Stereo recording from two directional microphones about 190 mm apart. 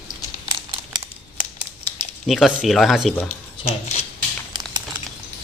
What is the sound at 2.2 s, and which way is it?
A man's voice, centre (ahead or behind).